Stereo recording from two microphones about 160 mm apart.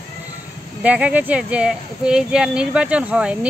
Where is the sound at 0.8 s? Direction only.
10° right (ahead or behind).